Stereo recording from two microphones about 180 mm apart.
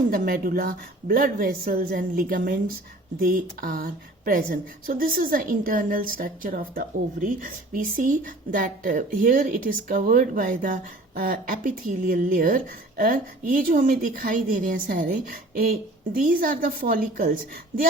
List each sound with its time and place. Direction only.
0.1 s a woman's voice: 55° right (ahead or behind)